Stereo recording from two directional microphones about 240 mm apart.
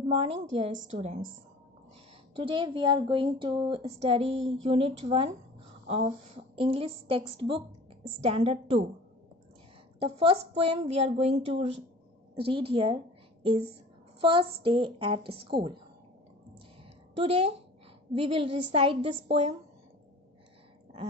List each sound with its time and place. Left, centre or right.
0.1 s a woman's voice: right
2.3 s a woman's voice: right
9.9 s a woman's voice: right
17.2 s a woman's voice: right